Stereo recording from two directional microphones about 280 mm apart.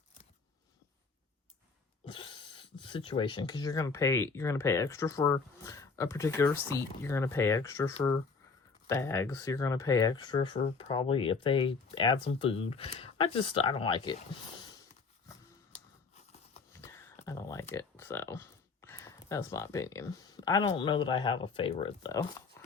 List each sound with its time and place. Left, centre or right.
2.0 s a sound: centre
2.8 s speech: centre
16.7 s speech: centre